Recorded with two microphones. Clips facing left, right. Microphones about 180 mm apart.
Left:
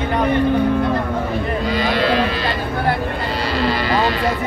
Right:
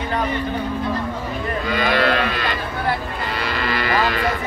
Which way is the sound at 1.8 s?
55° right (ahead or behind).